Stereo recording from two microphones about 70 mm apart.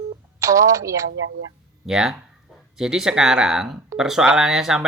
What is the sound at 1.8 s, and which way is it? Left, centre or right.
Speech, centre.